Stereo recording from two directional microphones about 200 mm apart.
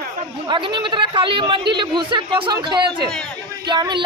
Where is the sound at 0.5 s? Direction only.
25° right (ahead or behind).